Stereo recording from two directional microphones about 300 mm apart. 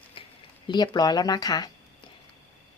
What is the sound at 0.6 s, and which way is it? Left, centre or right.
Speech, centre.